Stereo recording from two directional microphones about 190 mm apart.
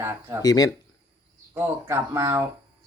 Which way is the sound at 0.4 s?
20° left (ahead or behind).